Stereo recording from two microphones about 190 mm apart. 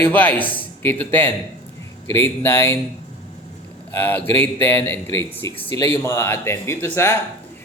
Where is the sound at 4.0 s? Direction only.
10° left (ahead or behind).